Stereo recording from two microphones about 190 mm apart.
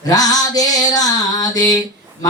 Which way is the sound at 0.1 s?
20° left (ahead or behind).